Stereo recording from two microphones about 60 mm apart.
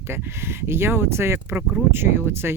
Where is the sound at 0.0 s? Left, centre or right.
Right.